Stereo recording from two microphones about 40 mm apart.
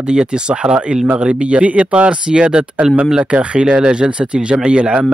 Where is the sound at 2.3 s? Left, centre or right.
Right.